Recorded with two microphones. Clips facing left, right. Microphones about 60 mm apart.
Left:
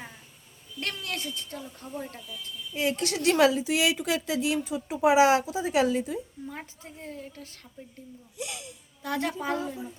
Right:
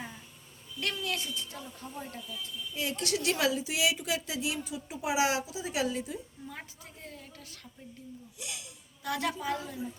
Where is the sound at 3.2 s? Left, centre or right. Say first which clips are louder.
Left 10 dB; left.